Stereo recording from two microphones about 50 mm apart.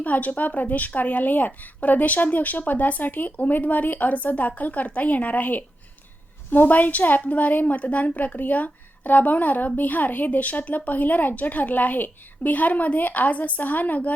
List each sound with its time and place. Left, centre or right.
0.0 s a woman's voice: left